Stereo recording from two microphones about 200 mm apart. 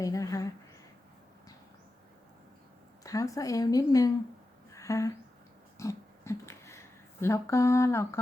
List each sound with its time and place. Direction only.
0.0 s speech: 15° left (ahead or behind)
3.0 s speech: 15° left (ahead or behind)
4.7 s a sound: 15° left (ahead or behind)